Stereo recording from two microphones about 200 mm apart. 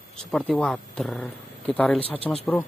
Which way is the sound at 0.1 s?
5° left (ahead or behind).